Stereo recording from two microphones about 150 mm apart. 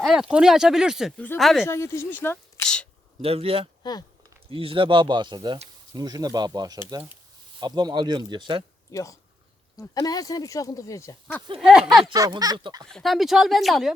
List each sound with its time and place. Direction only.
0.0 s speech: centre (ahead or behind)
1.6 s speech: 20° left (ahead or behind)
3.2 s speech: 40° right (ahead or behind)
8.9 s speech: 20° left (ahead or behind)
11.6 s speech: 5° right (ahead or behind)
12.1 s speech: 25° right (ahead or behind)
12.9 s speech: centre (ahead or behind)